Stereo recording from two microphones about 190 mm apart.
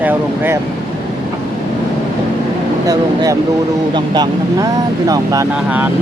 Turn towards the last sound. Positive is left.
turn(degrees=-15)  # may be behind; listen again after turning